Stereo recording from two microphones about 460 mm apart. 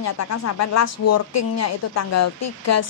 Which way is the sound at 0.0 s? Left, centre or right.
Left.